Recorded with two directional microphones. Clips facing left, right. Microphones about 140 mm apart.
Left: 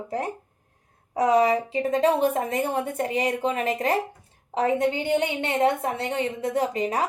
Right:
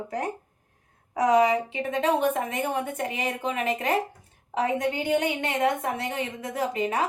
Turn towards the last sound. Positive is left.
turn(degrees=35)  # may be behind; listen again after turning